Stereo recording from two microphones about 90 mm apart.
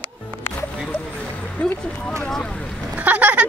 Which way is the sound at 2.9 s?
15° right (ahead or behind).